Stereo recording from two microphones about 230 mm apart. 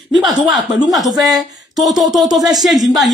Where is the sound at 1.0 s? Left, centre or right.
Centre.